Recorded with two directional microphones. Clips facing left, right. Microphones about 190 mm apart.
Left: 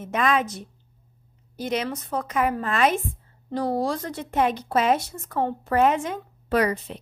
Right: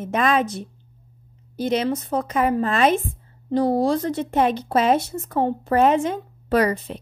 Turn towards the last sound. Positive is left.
turn(degrees=-35)  # may be behind; listen again after turning